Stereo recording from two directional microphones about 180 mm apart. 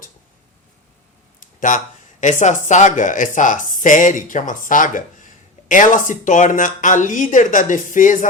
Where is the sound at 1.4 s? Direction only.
45° left (ahead or behind).